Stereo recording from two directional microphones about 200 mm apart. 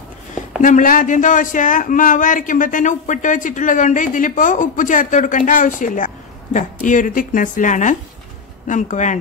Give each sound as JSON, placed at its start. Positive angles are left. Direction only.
{"t": 0.6, "sound": "a man's voice", "side_deg": 40}